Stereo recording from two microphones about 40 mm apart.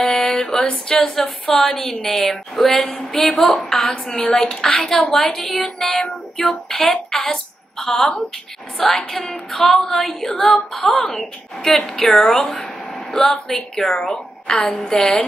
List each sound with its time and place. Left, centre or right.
0.0 s a sound: centre
2.5 s a woman's voice: centre; by 8.1 s left
8.8 s a woman's voice: centre